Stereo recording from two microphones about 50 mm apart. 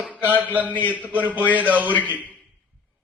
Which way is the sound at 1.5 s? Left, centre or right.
Right.